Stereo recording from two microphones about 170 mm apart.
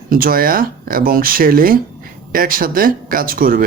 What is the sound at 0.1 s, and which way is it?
Speech, 60° right (ahead or behind).